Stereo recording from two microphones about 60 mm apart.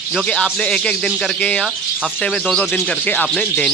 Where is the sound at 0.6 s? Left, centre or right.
Centre.